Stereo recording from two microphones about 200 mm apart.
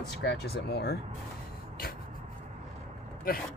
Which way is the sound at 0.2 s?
55° left (ahead or behind).